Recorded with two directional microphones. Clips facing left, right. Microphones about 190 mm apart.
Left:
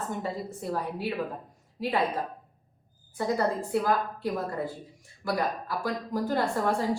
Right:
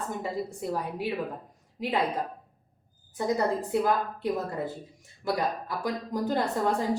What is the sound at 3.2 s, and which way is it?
Speech, 20° right (ahead or behind).